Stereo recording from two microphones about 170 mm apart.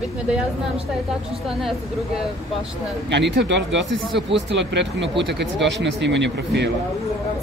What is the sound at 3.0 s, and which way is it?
Speech, 90° right.